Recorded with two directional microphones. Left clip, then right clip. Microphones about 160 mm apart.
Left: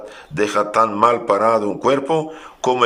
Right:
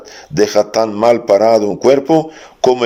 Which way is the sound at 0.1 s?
35° right (ahead or behind).